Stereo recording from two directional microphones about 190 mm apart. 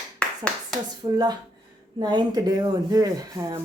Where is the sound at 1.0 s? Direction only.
25° right (ahead or behind).